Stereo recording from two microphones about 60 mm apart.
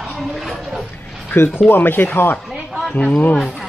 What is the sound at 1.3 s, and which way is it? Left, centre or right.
Speech, left.